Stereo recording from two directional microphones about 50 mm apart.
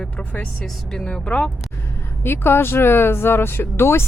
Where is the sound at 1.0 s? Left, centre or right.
Centre.